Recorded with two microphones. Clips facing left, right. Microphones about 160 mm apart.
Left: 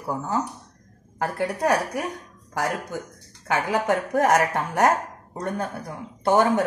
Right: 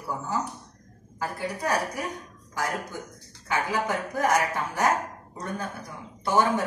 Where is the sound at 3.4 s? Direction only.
70° left (ahead or behind).